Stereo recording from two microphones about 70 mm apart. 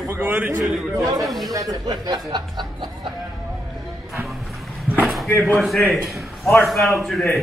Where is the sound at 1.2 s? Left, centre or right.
Centre.